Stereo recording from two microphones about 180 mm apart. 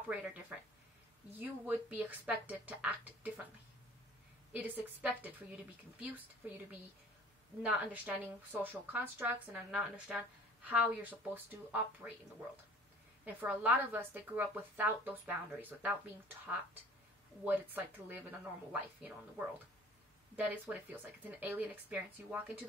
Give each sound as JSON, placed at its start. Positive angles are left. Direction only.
{"t": 0.1, "sound": "a woman's voice", "side_deg": -5}
{"t": 4.5, "sound": "a woman's voice", "side_deg": -10}
{"t": 13.2, "sound": "a woman's voice", "side_deg": -10}